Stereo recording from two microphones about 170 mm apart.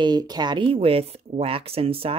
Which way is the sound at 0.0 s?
25° right (ahead or behind).